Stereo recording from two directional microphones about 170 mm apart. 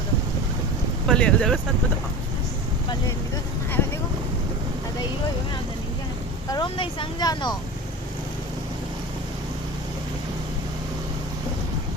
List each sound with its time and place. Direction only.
1.0 s speech: 5° left (ahead or behind)
6.5 s speech: 30° left (ahead or behind)